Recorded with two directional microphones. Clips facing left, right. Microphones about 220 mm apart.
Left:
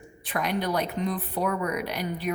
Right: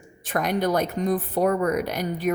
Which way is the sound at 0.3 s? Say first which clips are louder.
Right 4 dB; 45° right (ahead or behind).